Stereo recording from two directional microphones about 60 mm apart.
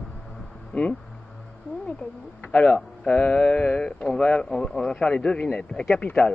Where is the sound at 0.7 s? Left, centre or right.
Left.